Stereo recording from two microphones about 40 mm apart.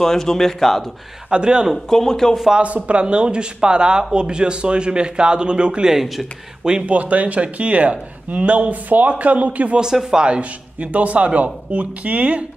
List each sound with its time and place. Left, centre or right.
0.0 s speech: centre
1.3 s a man's voice: right
1.9 s speech: centre
2.6 s a man's voice: right
5.9 s speech: centre
6.9 s speech: right
10.1 s speech: right